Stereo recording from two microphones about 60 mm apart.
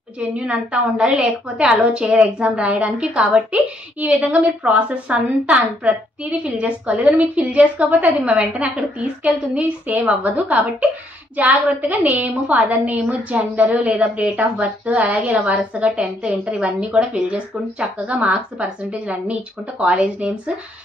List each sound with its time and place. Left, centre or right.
0.2 s a woman's voice: centre